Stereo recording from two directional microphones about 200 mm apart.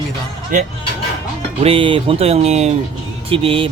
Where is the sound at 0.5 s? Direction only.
40° right (ahead or behind).